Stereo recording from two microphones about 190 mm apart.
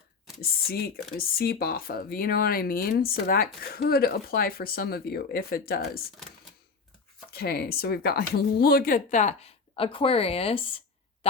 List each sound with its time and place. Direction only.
0.4 s speech: 55° left (ahead or behind)
7.3 s speech: 55° left (ahead or behind); by 11.3 s 30° left (ahead or behind)